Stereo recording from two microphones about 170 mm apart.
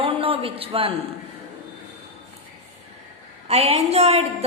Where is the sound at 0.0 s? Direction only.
35° right (ahead or behind).